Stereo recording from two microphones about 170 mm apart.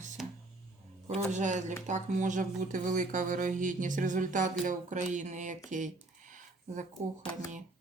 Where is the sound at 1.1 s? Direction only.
45° right (ahead or behind).